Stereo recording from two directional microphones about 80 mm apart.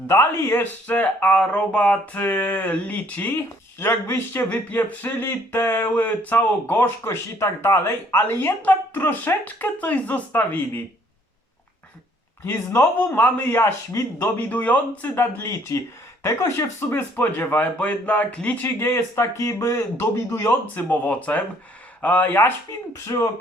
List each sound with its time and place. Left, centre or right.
0.1 s speech: left
12.5 s speech: left
15.1 s speech: left
23.0 s speech: left